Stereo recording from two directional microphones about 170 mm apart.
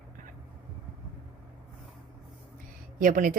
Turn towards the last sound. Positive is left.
turn(degrees=-55)  # may be behind; listen again after turning